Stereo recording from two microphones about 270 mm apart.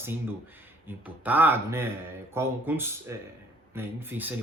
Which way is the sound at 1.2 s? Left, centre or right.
Centre.